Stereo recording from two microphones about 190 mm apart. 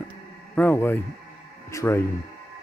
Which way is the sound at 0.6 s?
10° left (ahead or behind).